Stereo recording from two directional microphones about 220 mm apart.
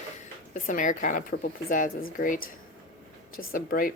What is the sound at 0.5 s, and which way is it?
Speech, 35° left (ahead or behind).